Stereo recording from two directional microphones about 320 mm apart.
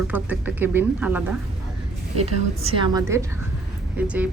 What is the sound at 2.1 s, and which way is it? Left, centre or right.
A woman's voice, centre.